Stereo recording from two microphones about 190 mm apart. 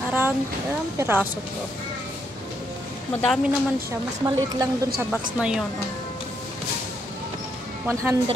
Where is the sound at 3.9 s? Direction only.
20° right (ahead or behind).